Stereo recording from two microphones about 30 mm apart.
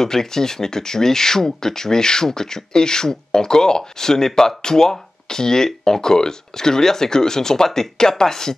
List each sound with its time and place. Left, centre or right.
0.0 s speech: centre